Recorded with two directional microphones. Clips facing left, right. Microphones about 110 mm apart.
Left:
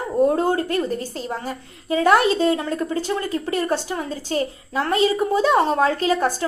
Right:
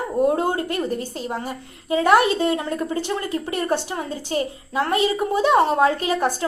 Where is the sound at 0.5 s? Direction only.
35° left (ahead or behind).